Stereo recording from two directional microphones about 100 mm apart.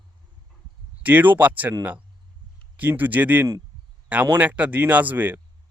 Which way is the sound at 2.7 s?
20° right (ahead or behind).